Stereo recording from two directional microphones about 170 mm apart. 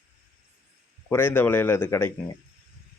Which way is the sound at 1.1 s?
10° left (ahead or behind).